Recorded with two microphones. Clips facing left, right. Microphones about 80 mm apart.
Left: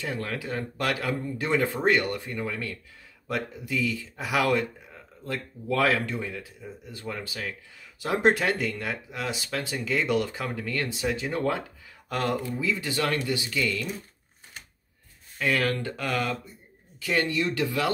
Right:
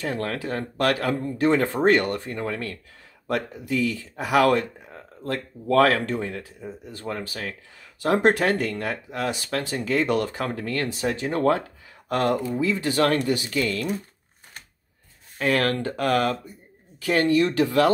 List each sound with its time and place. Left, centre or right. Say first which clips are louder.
0.0 s speech: right 4 dB; right
15.3 s speech: right 4 dB; right
17.6 s speech: right 7 dB; right